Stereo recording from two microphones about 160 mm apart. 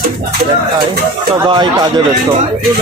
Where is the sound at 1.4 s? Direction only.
30° right (ahead or behind).